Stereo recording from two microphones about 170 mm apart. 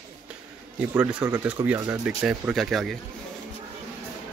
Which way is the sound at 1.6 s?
20° right (ahead or behind).